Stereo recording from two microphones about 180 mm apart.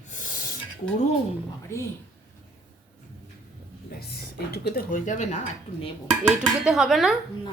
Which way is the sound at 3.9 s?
60° left (ahead or behind).